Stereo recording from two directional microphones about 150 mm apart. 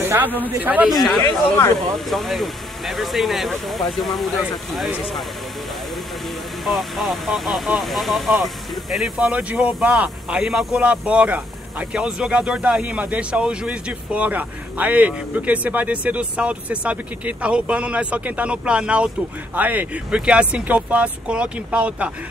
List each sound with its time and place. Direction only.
0.0 s speech: 15° right (ahead or behind)
0.9 s speech: centre (ahead or behind)
6.6 s speech: centre (ahead or behind)